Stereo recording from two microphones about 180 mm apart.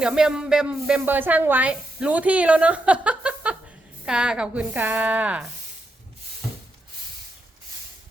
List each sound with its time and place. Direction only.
0.0 s a woman's voice: 5° right (ahead or behind)